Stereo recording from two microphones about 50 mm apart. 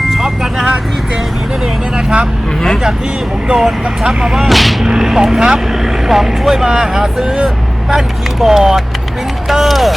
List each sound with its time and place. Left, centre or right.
0.1 s vehicle: centre
3.5 s speech: centre
4.4 s speech: centre
4.9 s speech: centre